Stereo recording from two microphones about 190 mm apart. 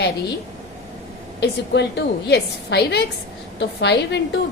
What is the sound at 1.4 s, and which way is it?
A woman's voice, 65° left (ahead or behind).